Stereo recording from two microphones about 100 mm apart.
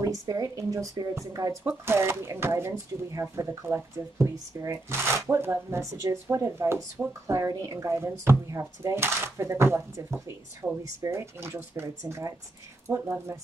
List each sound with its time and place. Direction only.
0.0 s speech: 35° right (ahead or behind)